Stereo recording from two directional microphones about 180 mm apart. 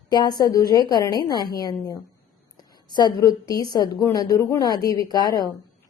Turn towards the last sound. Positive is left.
turn(degrees=20)  # may be behind; listen again after turning